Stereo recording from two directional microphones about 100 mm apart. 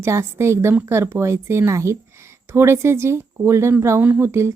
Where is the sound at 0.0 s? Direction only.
25° right (ahead or behind).